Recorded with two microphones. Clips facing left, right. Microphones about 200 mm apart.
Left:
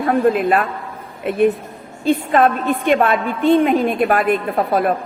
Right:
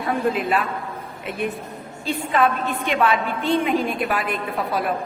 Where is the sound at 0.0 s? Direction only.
55° left (ahead or behind).